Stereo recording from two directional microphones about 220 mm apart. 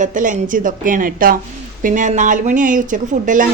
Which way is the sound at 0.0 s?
35° right (ahead or behind).